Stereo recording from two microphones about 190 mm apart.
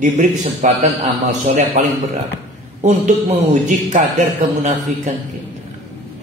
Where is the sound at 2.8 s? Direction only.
40° right (ahead or behind).